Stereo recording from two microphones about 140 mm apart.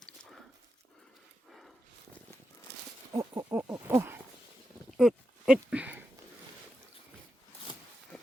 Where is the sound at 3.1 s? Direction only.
30° right (ahead or behind).